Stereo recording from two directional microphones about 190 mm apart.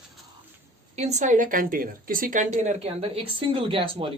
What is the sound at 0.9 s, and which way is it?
Speech, 35° right (ahead or behind).